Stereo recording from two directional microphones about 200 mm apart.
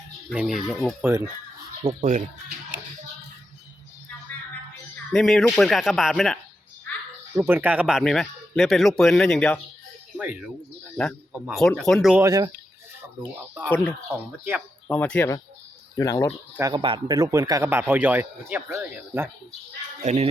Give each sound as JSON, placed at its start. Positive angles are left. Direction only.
{"t": 0.3, "sound": "speech", "side_deg": 0}
{"t": 1.0, "sound": "a man's voice", "side_deg": -10}
{"t": 1.8, "sound": "speech", "side_deg": -35}
{"t": 5.1, "sound": "speech", "side_deg": 0}
{"t": 7.3, "sound": "speech", "side_deg": -10}
{"t": 10.2, "sound": "a man's voice", "side_deg": -5}
{"t": 12.2, "sound": "a man's voice", "side_deg": -15}
{"t": 13.7, "sound": "speech", "side_deg": 5}
{"t": 16.6, "sound": "a man's voice", "side_deg": -20}
{"t": 20.1, "sound": "speech", "side_deg": -30}